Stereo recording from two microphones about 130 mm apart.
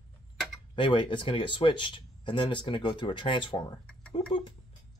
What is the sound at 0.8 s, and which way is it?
Speech, 40° left (ahead or behind).